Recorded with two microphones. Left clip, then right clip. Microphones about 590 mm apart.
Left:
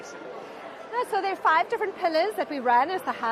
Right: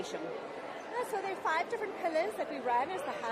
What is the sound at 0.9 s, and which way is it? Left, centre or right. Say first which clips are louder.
A woman's voice: left 10 dB; left.